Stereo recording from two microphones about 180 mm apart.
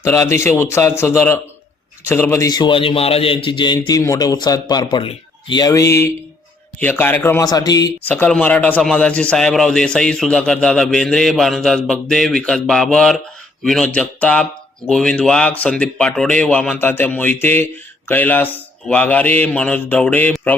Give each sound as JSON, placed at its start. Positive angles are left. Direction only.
{"t": 0.0, "sound": "a man's voice", "side_deg": 15}
{"t": 8.0, "sound": "a man's voice", "side_deg": 10}